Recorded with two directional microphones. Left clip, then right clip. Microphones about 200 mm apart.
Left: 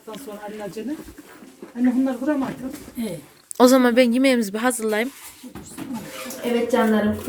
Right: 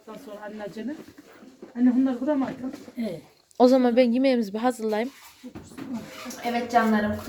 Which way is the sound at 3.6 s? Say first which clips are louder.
Left 3 dB; centre (ahead or behind).